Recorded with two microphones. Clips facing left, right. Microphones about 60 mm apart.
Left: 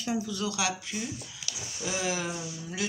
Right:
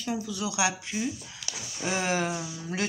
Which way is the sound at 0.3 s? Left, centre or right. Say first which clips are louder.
Right 2 dB; centre.